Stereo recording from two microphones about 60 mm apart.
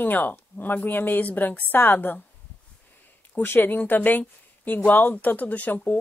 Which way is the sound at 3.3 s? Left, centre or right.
Left.